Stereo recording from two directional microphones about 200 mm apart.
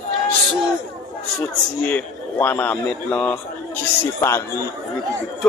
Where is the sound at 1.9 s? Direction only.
10° left (ahead or behind).